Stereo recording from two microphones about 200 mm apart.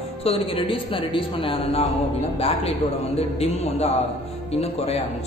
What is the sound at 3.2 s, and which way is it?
A woman's voice, 30° left (ahead or behind).